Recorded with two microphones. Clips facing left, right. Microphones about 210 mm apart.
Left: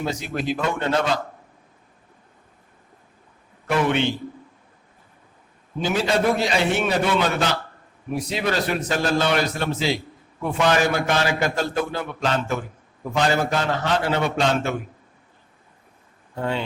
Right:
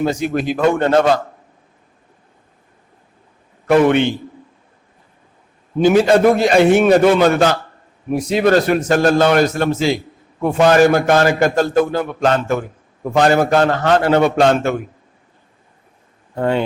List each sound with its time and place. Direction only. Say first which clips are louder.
0.0 s a man's voice: right 8 dB; 50° right (ahead or behind)
3.7 s a man's voice: right 9 dB; 55° right (ahead or behind)
5.8 s a man's voice: right 10 dB; 55° right (ahead or behind)
16.4 s a man's voice: right 8 dB; 55° right (ahead or behind)